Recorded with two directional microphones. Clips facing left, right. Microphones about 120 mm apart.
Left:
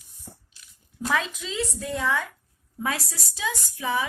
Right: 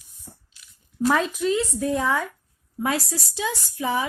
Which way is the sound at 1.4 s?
55° right (ahead or behind).